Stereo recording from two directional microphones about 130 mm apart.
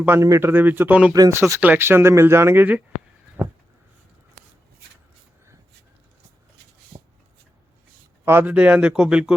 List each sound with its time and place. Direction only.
0.0 s speech: 20° right (ahead or behind)
1.1 s speech: 25° right (ahead or behind)
3.4 s a sound: 15° right (ahead or behind)
8.2 s speech: 15° right (ahead or behind)